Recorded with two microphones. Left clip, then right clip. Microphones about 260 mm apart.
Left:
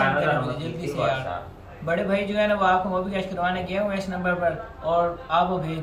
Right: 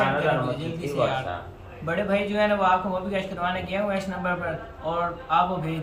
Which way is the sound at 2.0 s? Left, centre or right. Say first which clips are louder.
Right 1 dB; centre.